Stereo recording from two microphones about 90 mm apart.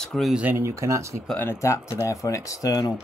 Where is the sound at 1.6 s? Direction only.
35° left (ahead or behind).